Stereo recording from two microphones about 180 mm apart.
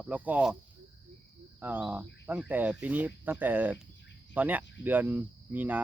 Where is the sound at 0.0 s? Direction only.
10° right (ahead or behind).